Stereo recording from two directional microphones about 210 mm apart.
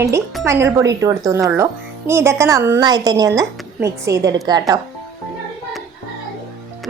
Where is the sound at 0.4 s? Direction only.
15° right (ahead or behind).